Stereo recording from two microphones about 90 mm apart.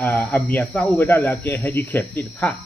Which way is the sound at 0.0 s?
20° left (ahead or behind).